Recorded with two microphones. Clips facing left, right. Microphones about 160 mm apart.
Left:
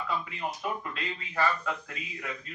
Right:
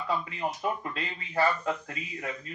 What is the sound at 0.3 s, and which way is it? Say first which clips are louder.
Speech: right 3 dB; 30° right (ahead or behind).